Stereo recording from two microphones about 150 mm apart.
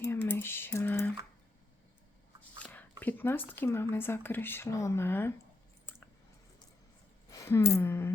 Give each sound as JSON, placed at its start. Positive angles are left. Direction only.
{"t": 0.0, "sound": "typing", "side_deg": 15}
{"t": 3.0, "sound": "speech", "side_deg": 10}
{"t": 7.3, "sound": "a sound", "side_deg": 20}